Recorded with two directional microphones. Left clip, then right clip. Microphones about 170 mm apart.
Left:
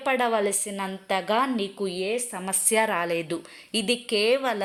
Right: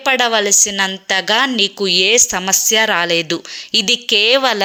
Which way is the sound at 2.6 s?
5° right (ahead or behind).